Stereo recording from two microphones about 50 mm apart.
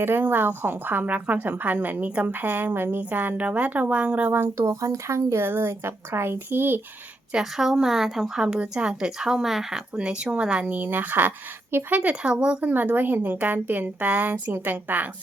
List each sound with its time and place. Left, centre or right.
0.0 s speech: right
3.0 s speech: right
4.5 s a woman's voice: right
7.3 s speech: centre
8.4 s a woman's voice: centre
12.2 s speech: right
14.5 s speech: right